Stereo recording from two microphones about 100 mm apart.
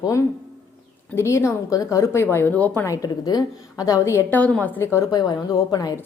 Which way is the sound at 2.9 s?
40° left (ahead or behind).